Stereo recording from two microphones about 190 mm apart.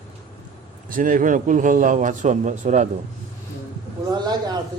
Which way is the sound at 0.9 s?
45° right (ahead or behind).